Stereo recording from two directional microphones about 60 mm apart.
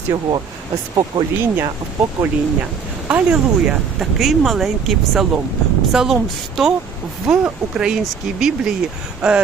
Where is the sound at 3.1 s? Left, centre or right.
Centre.